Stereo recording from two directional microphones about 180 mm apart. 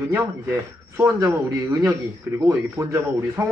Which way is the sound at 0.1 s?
15° right (ahead or behind).